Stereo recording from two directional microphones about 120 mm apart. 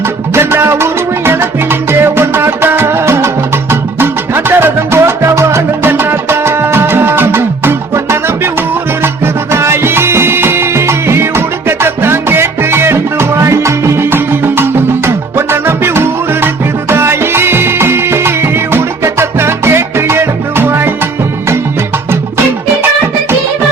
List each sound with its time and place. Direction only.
0.3 s music: 20° right (ahead or behind)
9.2 s music: 20° right (ahead or behind)